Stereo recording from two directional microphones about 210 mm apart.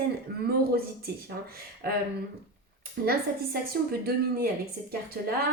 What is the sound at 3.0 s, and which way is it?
A woman's voice, 50° right (ahead or behind).